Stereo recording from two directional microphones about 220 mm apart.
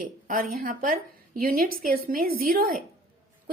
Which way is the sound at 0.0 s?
40° right (ahead or behind).